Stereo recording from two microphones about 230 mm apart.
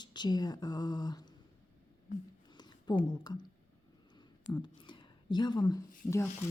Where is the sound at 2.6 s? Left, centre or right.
Centre.